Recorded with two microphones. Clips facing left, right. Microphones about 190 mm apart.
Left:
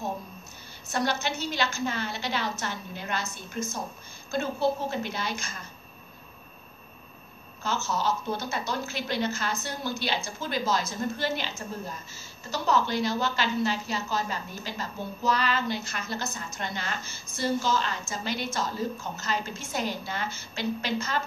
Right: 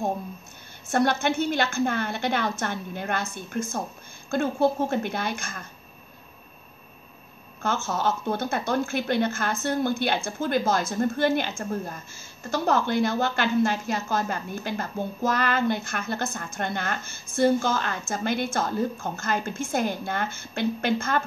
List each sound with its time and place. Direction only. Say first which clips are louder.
0.8 s a woman's voice: right 6 dB; 55° right (ahead or behind)
7.6 s a woman's voice: right 3 dB; 55° right (ahead or behind)